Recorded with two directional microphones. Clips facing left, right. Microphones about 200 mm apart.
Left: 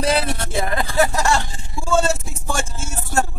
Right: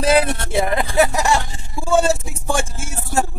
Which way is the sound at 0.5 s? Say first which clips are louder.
Right 3 dB; 20° right (ahead or behind).